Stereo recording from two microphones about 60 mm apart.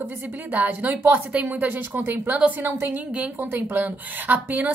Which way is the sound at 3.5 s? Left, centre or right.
Right.